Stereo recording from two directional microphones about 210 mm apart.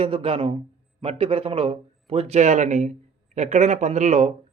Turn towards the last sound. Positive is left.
turn(degrees=-30)  # may be behind; listen again after turning